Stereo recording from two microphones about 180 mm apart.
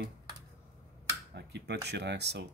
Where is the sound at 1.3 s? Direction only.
65° right (ahead or behind).